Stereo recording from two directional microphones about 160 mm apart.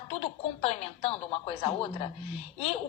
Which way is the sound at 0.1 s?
40° left (ahead or behind).